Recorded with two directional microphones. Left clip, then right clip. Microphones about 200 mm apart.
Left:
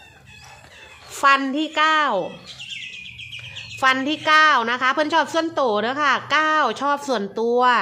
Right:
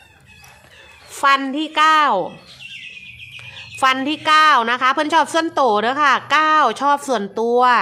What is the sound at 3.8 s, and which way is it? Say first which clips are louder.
A woman's voice: right 2 dB; 20° right (ahead or behind).